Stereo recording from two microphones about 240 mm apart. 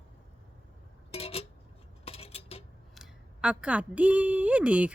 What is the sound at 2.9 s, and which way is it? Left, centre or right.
A woman's voice, centre.